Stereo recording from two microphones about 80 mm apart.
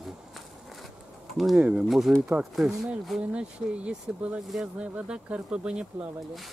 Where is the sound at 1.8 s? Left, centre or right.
Centre.